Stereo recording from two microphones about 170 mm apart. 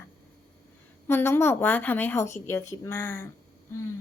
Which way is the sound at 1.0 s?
15° left (ahead or behind).